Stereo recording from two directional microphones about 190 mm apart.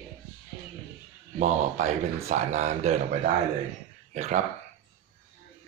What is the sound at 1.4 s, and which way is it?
Speech, 35° right (ahead or behind).